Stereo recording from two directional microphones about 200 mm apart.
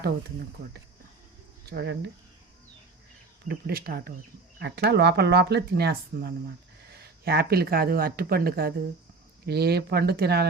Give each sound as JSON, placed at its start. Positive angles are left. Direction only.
{"t": 1.7, "sound": "speech", "side_deg": -55}
{"t": 3.5, "sound": "speech", "side_deg": -50}